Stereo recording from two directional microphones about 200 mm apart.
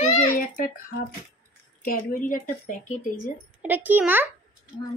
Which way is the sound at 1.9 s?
45° left (ahead or behind).